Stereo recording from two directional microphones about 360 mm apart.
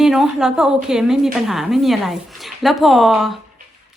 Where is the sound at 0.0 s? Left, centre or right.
Centre.